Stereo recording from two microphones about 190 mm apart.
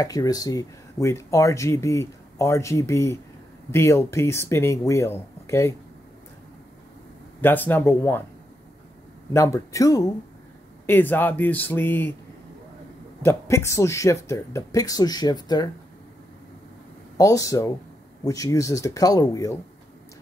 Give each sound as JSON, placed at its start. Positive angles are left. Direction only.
{"t": 0.0, "sound": "speech", "side_deg": 20}
{"t": 7.4, "sound": "speech", "side_deg": 10}
{"t": 9.3, "sound": "speech", "side_deg": 15}
{"t": 13.2, "sound": "speech", "side_deg": 15}
{"t": 17.2, "sound": "speech", "side_deg": 15}